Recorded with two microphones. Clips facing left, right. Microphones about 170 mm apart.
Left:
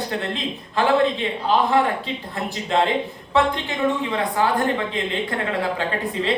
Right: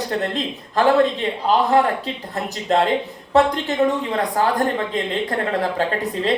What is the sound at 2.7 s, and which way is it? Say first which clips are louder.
A man's voice: right 2 dB; 40° right (ahead or behind).